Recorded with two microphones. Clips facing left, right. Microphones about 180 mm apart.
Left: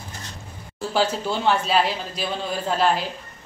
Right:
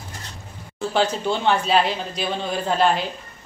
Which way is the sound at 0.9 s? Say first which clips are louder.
Right 1 dB; 5° left (ahead or behind).